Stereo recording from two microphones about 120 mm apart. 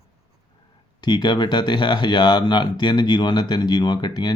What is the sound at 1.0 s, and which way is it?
Speech, 40° left (ahead or behind).